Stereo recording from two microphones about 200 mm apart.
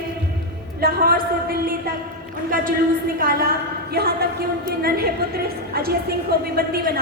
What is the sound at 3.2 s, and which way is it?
A woman's voice, 45° right (ahead or behind).